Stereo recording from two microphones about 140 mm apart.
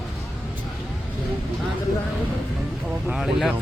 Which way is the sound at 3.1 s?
Centre (ahead or behind).